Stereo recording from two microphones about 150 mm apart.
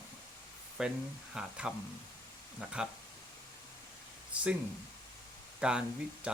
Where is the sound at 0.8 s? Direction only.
5° right (ahead or behind).